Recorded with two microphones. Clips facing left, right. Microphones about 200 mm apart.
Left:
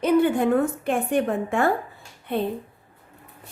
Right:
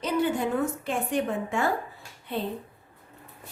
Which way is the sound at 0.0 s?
55° left (ahead or behind).